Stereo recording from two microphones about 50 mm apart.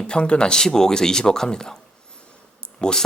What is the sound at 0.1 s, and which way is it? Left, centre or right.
Speech, centre.